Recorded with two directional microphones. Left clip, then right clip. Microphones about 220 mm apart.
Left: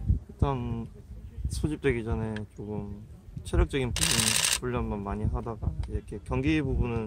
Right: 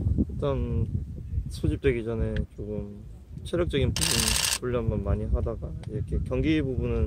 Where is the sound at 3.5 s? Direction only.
10° left (ahead or behind).